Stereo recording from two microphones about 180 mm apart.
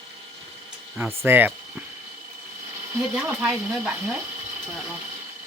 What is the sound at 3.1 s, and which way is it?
Speech, 5° right (ahead or behind).